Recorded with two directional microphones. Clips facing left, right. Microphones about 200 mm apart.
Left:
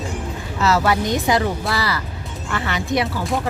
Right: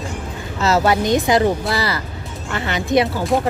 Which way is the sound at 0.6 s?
25° right (ahead or behind).